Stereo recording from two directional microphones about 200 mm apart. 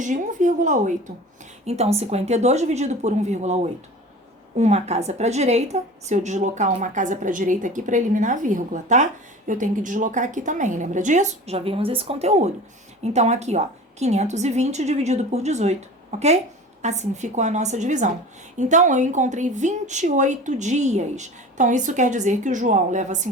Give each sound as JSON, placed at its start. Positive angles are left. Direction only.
{"t": 0.0, "sound": "a woman's voice", "side_deg": -40}